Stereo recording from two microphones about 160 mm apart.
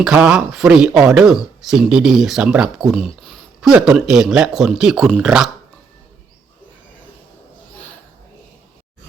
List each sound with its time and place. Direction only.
0.0 s speech: 5° right (ahead or behind)